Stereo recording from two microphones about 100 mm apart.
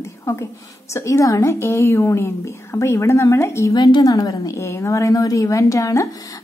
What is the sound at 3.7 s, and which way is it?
A woman's voice, 40° left (ahead or behind).